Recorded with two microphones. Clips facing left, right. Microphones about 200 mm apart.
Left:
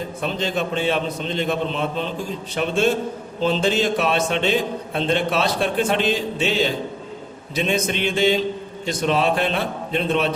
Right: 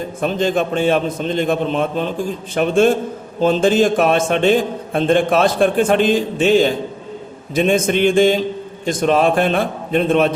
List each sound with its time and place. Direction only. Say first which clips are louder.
0.2 s a man's voice: right 7 dB; 50° right (ahead or behind)